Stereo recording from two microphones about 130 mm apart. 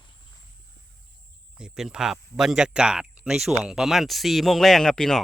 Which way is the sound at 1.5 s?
5° right (ahead or behind).